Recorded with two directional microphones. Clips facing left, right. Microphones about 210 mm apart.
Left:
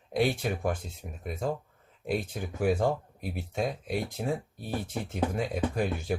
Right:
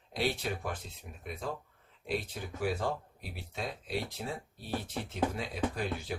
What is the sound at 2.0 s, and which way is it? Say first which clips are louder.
Speech: left 5 dB; 50° left (ahead or behind).